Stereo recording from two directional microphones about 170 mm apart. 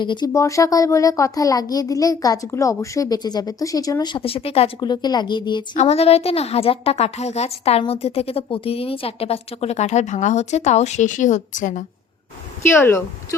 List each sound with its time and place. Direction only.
0.0 s speech: 25° left (ahead or behind)
5.7 s a woman's voice: 40° left (ahead or behind)
12.6 s speech: 15° left (ahead or behind)